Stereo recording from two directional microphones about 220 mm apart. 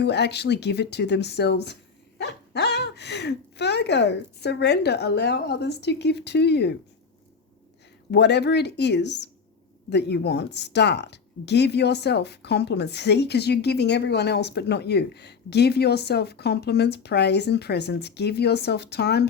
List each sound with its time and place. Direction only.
0.0 s speech: 50° left (ahead or behind)
8.1 s speech: 50° left (ahead or behind)